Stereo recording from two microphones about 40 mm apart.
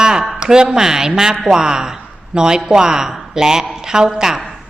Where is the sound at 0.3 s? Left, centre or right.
Centre.